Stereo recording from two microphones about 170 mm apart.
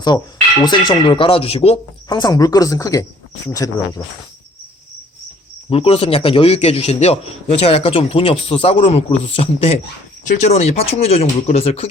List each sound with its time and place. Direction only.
0.6 s a man's voice: 25° left (ahead or behind)
2.0 s speech: 25° left (ahead or behind)
5.7 s a man's voice: 35° left (ahead or behind)